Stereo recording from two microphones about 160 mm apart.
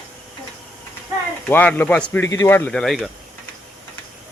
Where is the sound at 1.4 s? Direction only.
10° left (ahead or behind).